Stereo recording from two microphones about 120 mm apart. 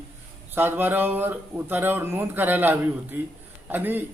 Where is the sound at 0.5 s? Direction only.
20° right (ahead or behind).